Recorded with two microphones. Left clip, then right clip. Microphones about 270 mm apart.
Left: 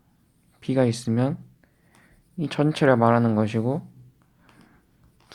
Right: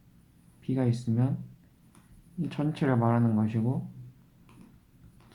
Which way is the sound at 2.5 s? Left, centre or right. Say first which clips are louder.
Left 10 dB; left.